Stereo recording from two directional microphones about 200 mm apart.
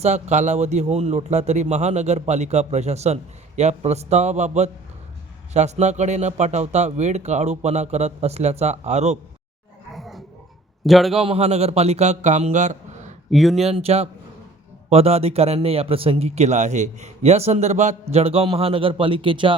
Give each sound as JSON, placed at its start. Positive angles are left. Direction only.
{"t": 0.0, "sound": "speech", "side_deg": -35}
{"t": 9.9, "sound": "a sound", "side_deg": 0}
{"t": 10.8, "sound": "a man's voice", "side_deg": 0}
{"t": 11.2, "sound": "speech", "side_deg": -30}
{"t": 13.3, "sound": "a man's voice", "side_deg": 0}
{"t": 13.6, "sound": "speech", "side_deg": -30}